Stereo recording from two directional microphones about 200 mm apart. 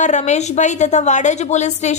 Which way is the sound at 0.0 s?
35° left (ahead or behind).